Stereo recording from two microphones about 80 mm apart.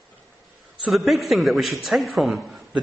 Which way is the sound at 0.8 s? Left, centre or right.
Centre.